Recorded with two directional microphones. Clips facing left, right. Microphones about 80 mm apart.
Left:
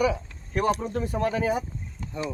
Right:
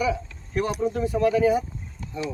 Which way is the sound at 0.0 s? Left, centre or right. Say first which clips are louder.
Left 1 dB; left.